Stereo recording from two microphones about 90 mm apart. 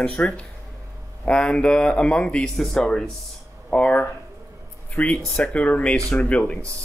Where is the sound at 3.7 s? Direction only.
15° left (ahead or behind).